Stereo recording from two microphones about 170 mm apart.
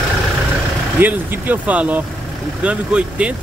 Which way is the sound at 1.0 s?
10° right (ahead or behind).